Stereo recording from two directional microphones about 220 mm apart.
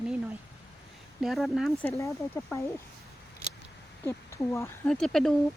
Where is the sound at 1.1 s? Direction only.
Centre (ahead or behind).